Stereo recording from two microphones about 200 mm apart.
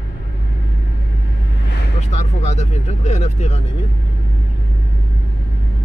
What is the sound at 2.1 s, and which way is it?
Speech, 35° left (ahead or behind).